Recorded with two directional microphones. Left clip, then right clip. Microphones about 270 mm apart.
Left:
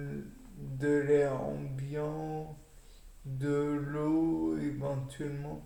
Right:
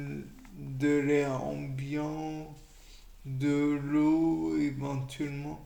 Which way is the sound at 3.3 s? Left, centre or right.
Right.